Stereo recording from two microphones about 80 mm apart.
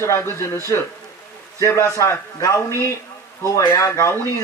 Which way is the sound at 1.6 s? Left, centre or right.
Left.